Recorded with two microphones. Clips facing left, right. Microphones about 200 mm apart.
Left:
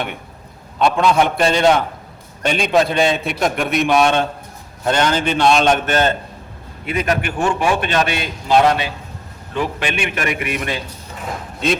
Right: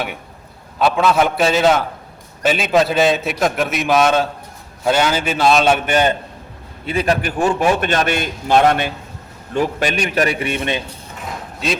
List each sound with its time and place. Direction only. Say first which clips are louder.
0.8 s a man's voice: even; 5° right (ahead or behind)
6.8 s a man's voice: right 2 dB; 30° right (ahead or behind); by 8.9 s 50° right (ahead or behind)
9.6 s a man's voice: right 3 dB; 40° right (ahead or behind); by 10.8 s 25° right (ahead or behind)